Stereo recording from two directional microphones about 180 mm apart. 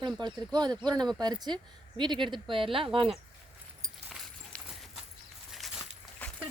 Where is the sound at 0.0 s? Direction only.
25° right (ahead or behind).